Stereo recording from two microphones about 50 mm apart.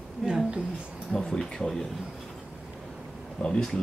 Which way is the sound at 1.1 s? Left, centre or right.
Centre.